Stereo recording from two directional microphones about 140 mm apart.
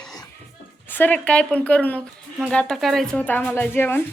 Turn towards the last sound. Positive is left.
turn(degrees=15)  # may be behind; listen again after turning